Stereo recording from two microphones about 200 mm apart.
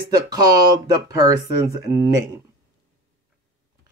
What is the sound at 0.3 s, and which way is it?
Speech, 20° right (ahead or behind).